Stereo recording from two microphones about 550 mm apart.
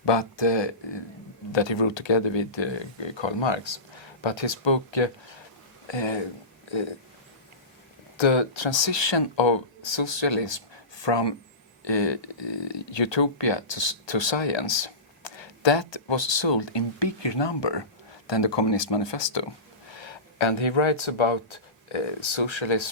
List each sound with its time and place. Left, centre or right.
0.0 s speech: left
8.1 s speech: left